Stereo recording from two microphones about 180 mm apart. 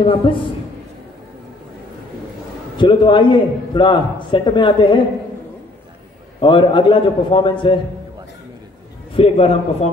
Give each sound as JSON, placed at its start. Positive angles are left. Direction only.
{"t": 0.0, "sound": "a man's voice", "side_deg": 30}
{"t": 2.8, "sound": "a man's voice", "side_deg": 25}
{"t": 6.4, "sound": "a man's voice", "side_deg": 30}
{"t": 9.1, "sound": "a man's voice", "side_deg": 30}